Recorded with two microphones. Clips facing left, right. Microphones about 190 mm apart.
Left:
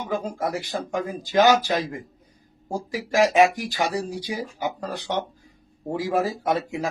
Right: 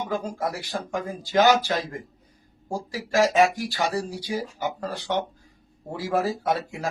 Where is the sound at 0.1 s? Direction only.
20° left (ahead or behind).